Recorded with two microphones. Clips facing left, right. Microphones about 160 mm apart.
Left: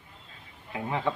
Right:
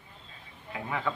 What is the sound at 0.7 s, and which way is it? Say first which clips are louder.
Speech: left 3 dB; 25° left (ahead or behind).